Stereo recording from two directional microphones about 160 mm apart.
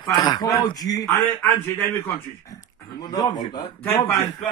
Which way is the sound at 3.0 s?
25° left (ahead or behind).